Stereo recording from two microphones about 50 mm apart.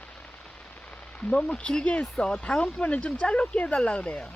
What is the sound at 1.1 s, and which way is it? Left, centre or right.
Speech, left.